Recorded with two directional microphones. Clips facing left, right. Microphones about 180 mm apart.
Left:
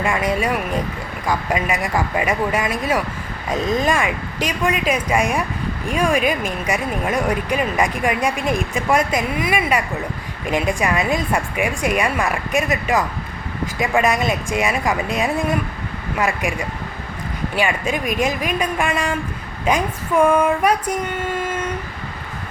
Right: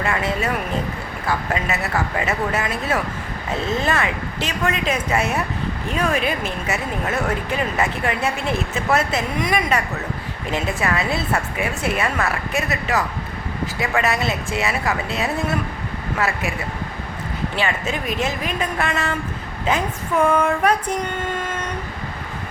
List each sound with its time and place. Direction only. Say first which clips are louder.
0.0 s speech: left 2 dB; 15° left (ahead or behind)
21.3 s train: left 3 dB; 10° left (ahead or behind)